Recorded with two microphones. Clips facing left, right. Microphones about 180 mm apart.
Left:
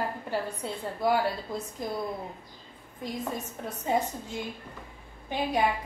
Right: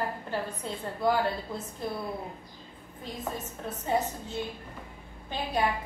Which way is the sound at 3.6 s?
15° left (ahead or behind).